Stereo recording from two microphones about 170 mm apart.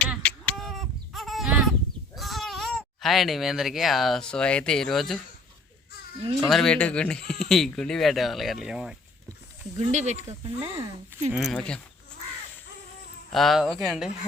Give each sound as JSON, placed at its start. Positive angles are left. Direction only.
{"t": 0.2, "sound": "a sound", "side_deg": 5}
{"t": 2.1, "sound": "speech", "side_deg": 0}
{"t": 6.5, "sound": "speech", "side_deg": 5}
{"t": 9.7, "sound": "speech", "side_deg": -45}
{"t": 10.4, "sound": "speech", "side_deg": -30}
{"t": 11.3, "sound": "speech", "side_deg": 0}
{"t": 13.3, "sound": "speech", "side_deg": 0}